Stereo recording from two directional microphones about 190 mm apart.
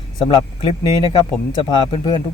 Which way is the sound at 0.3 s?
25° left (ahead or behind).